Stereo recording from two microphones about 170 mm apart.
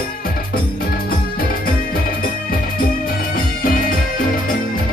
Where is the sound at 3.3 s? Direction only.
55° left (ahead or behind).